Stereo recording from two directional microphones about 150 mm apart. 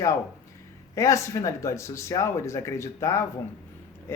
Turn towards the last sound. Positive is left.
turn(degrees=15)  # may be behind; listen again after turning